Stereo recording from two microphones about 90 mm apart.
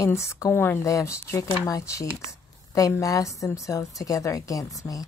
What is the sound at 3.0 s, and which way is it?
A woman's voice, 40° left (ahead or behind).